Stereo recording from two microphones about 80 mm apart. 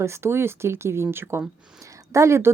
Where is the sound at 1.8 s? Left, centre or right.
Right.